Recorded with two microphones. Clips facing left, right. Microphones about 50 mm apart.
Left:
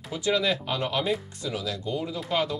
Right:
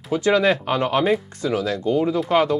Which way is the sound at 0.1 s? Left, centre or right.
Right.